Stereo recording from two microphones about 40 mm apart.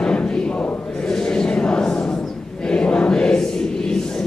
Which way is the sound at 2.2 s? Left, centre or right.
Centre.